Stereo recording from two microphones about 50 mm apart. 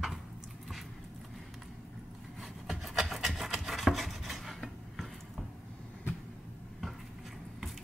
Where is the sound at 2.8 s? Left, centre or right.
Centre.